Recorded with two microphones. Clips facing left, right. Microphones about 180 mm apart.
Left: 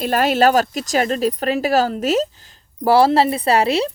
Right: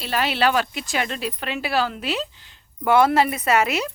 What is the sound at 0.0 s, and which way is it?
Speech, 45° left (ahead or behind).